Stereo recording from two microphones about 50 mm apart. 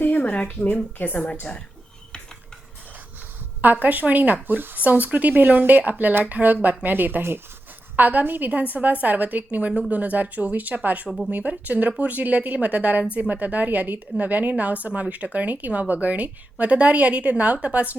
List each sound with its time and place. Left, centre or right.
0.0 s a sound: left
0.9 s a woman's voice: left
3.6 s speech: right
7.9 s a woman's voice: right